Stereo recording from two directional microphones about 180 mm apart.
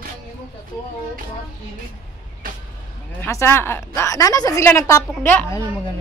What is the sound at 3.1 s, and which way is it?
A woman's voice, 15° left (ahead or behind).